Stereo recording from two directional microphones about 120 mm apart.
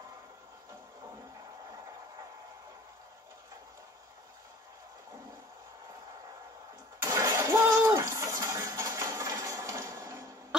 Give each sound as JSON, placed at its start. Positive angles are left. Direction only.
{"t": 7.0, "sound": "engine starting", "side_deg": -30}